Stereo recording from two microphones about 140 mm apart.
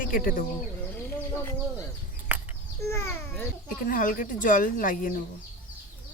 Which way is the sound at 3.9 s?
75° left (ahead or behind).